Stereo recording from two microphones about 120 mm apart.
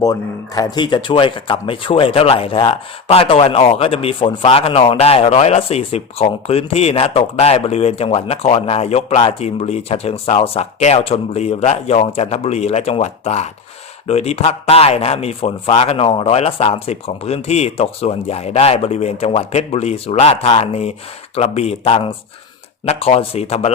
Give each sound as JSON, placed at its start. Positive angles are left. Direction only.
{"t": 0.0, "sound": "speech", "side_deg": 30}